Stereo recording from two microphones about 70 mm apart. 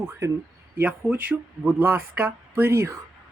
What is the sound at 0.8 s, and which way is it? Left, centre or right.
A man's voice, right.